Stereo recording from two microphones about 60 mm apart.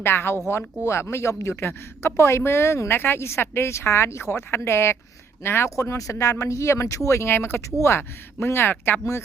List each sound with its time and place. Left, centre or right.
0.0 s a woman's voice: left
5.7 s a woman's voice: left
8.7 s speech: left